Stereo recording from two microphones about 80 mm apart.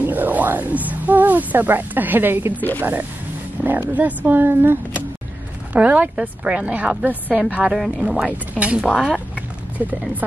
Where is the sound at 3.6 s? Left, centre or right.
Right.